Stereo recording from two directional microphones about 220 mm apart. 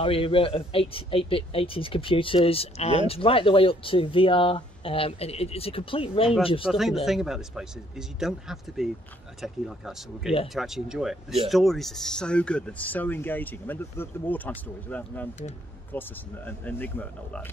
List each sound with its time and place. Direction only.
0.0 s speech: 25° left (ahead or behind)
6.7 s speech: centre (ahead or behind)